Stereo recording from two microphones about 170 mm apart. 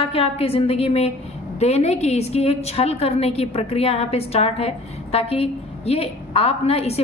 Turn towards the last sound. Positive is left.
turn(degrees=35)  # may be behind; listen again after turning